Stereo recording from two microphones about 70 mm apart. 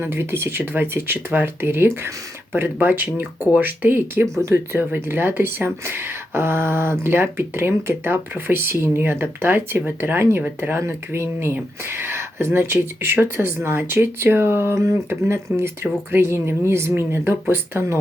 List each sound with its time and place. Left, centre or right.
0.0 s speech: right
4.8 s speech: right